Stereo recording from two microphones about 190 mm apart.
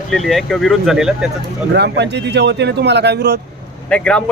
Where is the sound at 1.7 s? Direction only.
65° right (ahead or behind).